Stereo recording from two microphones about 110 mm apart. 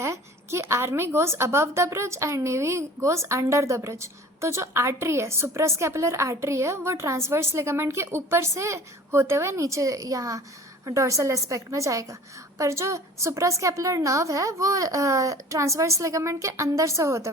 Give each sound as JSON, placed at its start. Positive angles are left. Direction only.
{"t": 0.0, "sound": "a woman's voice", "side_deg": -25}